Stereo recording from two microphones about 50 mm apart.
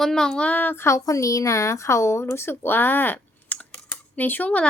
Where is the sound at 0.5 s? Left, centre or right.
Left.